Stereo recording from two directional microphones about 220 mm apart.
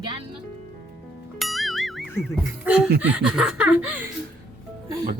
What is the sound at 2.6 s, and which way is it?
Laughter, 5° right (ahead or behind).